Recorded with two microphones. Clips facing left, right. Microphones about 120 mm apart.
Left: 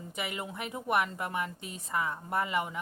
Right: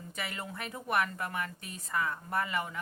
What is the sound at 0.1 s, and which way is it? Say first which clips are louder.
A woman's voice: left 3 dB; 15° left (ahead or behind).